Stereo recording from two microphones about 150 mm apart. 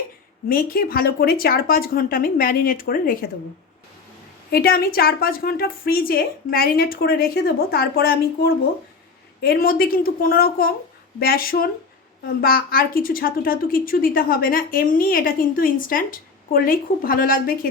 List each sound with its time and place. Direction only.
0.4 s a woman's voice: 75° left (ahead or behind)
4.5 s a woman's voice: 90° left; by 17.7 s 70° left (ahead or behind)